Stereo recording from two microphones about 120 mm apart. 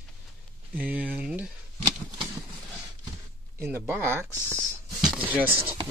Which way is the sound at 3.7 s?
20° right (ahead or behind).